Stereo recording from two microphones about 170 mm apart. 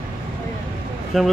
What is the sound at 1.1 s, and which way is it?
Speech, centre (ahead or behind).